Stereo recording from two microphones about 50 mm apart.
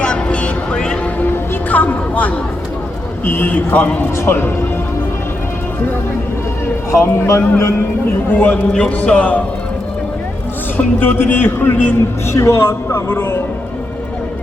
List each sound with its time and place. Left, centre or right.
0.0 s music: left
1.7 s a sound: left
3.2 s a man's voice: left
4.3 s speech: left
7.0 s a man's voice: left
8.3 s a man's voice: left
10.8 s a man's voice: left
12.3 s a man's voice: left